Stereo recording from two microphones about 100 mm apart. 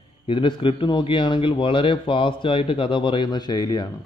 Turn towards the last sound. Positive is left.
turn(degrees=40)  # may be behind; listen again after turning